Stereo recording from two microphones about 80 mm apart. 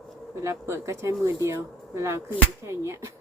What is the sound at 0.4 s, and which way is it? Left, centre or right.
A woman's voice, right.